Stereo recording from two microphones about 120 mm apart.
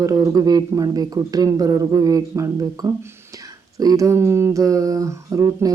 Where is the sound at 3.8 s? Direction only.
30° right (ahead or behind).